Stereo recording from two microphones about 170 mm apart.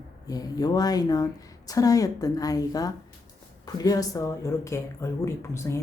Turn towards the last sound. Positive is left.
turn(degrees=15)  # may be behind; listen again after turning